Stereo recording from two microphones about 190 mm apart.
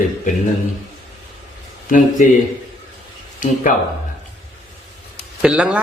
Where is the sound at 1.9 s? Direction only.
45° left (ahead or behind).